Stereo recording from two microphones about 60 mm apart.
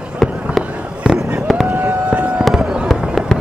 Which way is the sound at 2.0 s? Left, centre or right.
Centre.